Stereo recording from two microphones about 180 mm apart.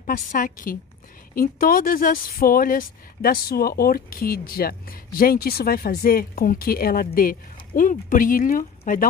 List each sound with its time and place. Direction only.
0.0 s speech: 50° left (ahead or behind)